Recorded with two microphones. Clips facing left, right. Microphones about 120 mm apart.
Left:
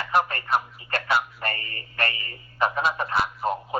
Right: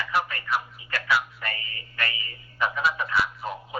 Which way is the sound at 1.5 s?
55° left (ahead or behind).